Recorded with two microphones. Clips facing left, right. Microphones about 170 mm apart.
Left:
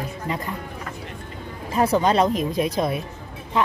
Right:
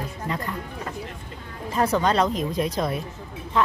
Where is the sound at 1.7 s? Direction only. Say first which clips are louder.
Left 2 dB; 15° left (ahead or behind).